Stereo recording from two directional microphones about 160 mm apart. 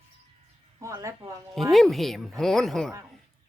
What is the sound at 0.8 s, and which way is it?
Speech, 20° right (ahead or behind).